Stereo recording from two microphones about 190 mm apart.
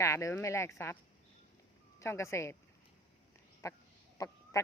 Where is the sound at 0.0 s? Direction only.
15° left (ahead or behind).